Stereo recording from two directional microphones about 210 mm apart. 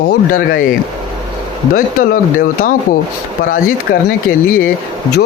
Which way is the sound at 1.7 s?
45° left (ahead or behind).